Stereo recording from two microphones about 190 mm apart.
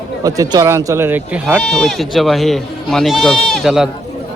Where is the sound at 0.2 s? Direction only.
20° right (ahead or behind).